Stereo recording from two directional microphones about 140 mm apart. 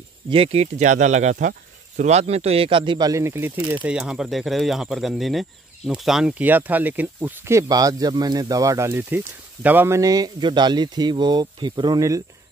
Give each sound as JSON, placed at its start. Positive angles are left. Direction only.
{"t": 0.3, "sound": "speech", "side_deg": -45}
{"t": 3.8, "sound": "speech", "side_deg": -5}
{"t": 7.6, "sound": "speech", "side_deg": -25}